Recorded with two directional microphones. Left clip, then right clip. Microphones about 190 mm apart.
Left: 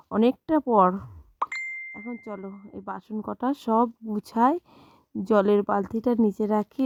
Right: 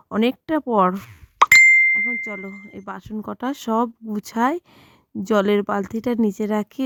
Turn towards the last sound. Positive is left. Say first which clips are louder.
# right 1 dB
turn(degrees=-25)  # may be behind; listen again after turning